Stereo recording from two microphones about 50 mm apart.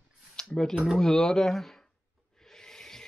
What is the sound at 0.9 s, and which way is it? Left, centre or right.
Speech, centre.